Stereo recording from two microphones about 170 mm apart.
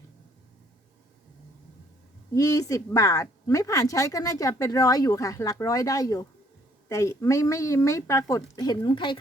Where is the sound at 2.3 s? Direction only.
20° left (ahead or behind).